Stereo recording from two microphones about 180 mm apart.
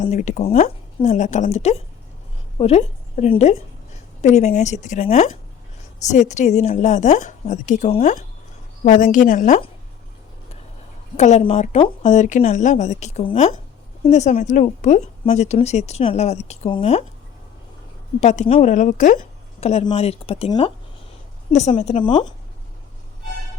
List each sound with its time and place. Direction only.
0.0 s a woman's voice: 40° left (ahead or behind)
8.8 s speech: 45° left (ahead or behind)
11.2 s a woman's voice: 40° left (ahead or behind)
18.2 s a woman's voice: 40° left (ahead or behind)
22.0 s speech: 25° left (ahead or behind)